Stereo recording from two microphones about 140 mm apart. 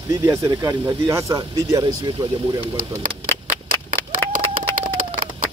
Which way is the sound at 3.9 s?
75° right (ahead or behind).